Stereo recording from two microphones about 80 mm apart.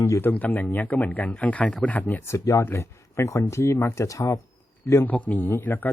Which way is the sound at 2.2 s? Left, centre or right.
Left.